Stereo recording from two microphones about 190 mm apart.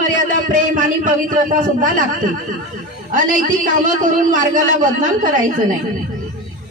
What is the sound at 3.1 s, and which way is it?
A man's voice, 45° right (ahead or behind).